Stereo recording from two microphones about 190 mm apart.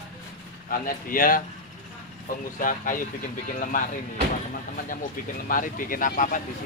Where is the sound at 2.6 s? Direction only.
45° left (ahead or behind).